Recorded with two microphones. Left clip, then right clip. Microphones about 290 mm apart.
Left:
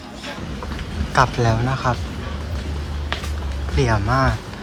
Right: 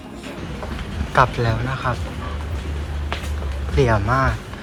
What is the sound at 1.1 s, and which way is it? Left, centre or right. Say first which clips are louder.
Speech: even; centre.